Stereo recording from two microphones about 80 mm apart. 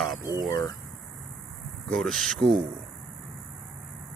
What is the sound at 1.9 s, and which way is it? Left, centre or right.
Speech, centre.